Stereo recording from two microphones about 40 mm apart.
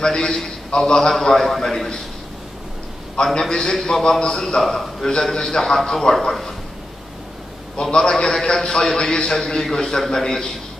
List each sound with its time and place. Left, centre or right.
0.0 s a man's voice: centre
3.3 s a man's voice: centre
7.7 s a man's voice: centre